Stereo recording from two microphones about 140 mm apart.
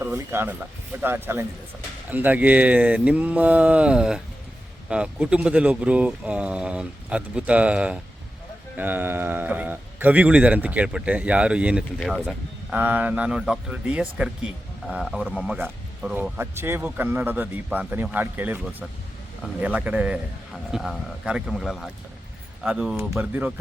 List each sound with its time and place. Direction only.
0.0 s a sound: 15° right (ahead or behind)
1.0 s a man's voice: 15° right (ahead or behind)
16.4 s a man's voice: 15° right (ahead or behind)